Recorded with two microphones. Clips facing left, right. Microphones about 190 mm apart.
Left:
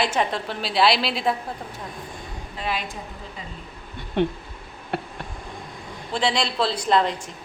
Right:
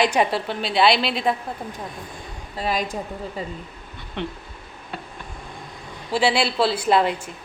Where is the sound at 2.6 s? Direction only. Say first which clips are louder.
Right 5 dB; 40° right (ahead or behind).